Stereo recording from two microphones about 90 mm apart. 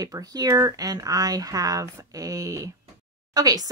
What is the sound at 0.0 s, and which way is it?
Speech, 40° right (ahead or behind).